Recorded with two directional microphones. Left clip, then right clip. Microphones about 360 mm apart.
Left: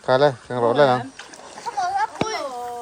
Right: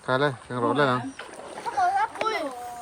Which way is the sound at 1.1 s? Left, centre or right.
Centre.